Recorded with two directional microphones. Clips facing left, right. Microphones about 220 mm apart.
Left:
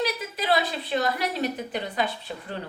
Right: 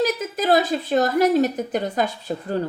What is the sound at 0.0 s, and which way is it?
A woman's voice, 45° right (ahead or behind).